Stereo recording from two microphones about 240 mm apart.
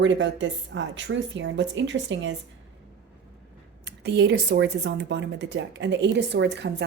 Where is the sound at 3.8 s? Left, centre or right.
Right.